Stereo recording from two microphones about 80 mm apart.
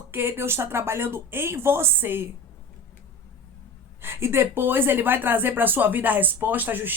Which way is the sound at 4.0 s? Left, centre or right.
Right.